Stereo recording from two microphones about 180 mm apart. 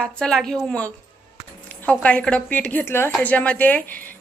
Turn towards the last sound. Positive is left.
turn(degrees=10)  # may be behind; listen again after turning